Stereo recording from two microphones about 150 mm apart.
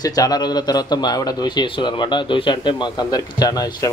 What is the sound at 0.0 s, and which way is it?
Speech, 25° left (ahead or behind).